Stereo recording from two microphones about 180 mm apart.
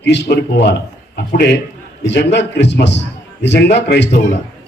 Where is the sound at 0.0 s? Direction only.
75° left (ahead or behind).